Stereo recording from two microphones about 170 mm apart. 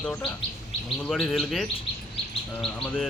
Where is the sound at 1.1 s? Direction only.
5° left (ahead or behind).